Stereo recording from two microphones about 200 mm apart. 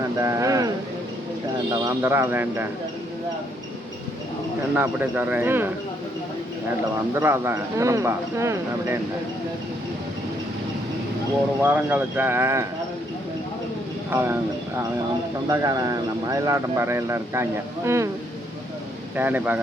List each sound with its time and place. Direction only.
0.2 s a sound: 15° right (ahead or behind)
1.7 s speech: 15° right (ahead or behind)
4.7 s speech: 10° right (ahead or behind)
7.1 s speech: 10° right (ahead or behind)
11.6 s speech: 10° right (ahead or behind)
14.1 s speech: 10° right (ahead or behind)
15.4 s speech: 20° right (ahead or behind)
19.1 s speech: 10° right (ahead or behind)